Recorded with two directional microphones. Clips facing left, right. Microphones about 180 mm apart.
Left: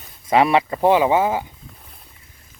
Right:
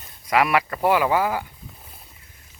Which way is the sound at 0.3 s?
25° left (ahead or behind).